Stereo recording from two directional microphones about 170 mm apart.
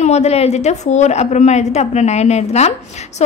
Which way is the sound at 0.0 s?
40° left (ahead or behind).